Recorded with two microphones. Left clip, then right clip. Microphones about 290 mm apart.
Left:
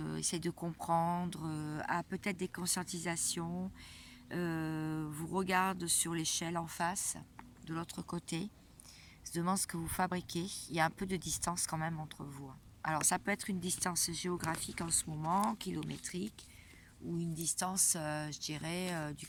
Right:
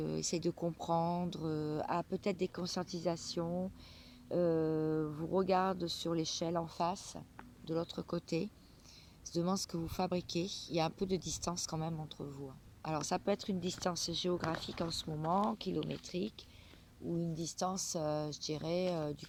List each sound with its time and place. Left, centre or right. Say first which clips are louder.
0.0 s speech: right 3 dB; left